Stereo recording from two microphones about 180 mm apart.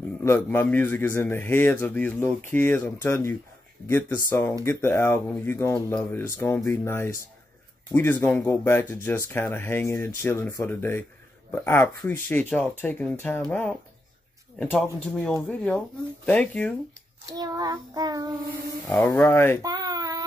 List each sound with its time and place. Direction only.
0.2 s speech: 15° left (ahead or behind)
17.3 s child singing: 20° right (ahead or behind)
18.9 s speech: 10° left (ahead or behind)
19.6 s baby cry: 20° right (ahead or behind)